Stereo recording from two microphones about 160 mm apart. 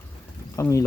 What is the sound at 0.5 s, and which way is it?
Speech, 20° left (ahead or behind).